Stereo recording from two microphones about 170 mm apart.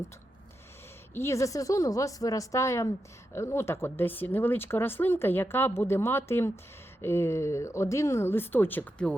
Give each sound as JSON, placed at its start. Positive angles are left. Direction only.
{"t": 1.1, "sound": "speech", "side_deg": 15}